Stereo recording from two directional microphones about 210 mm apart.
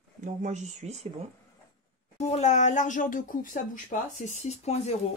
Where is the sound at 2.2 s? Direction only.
30° left (ahead or behind).